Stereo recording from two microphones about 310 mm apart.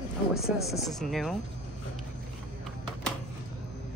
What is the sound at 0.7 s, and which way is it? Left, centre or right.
Speech, centre.